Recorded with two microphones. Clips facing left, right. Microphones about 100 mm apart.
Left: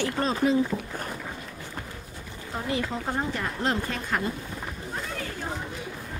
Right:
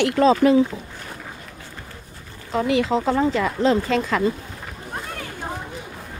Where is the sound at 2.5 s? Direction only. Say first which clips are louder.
Right 10 dB; 90° right.